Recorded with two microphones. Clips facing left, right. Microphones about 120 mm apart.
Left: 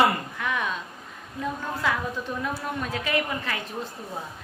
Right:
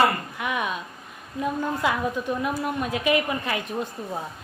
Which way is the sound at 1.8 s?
15° right (ahead or behind).